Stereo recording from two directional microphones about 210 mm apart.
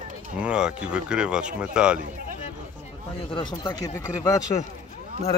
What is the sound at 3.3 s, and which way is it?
Speech, 20° left (ahead or behind).